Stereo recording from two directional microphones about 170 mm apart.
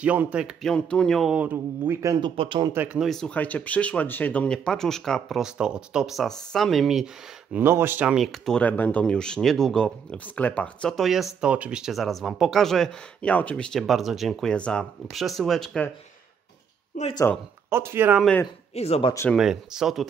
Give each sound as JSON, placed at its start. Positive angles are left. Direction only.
{"t": 0.0, "sound": "speech", "side_deg": -10}
{"t": 2.7, "sound": "speech", "side_deg": -10}
{"t": 7.5, "sound": "speech", "side_deg": -15}
{"t": 17.0, "sound": "speech", "side_deg": 45}
{"t": 17.6, "sound": "speech", "side_deg": -15}
{"t": 18.8, "sound": "speech", "side_deg": 35}
{"t": 19.3, "sound": "speech", "side_deg": -5}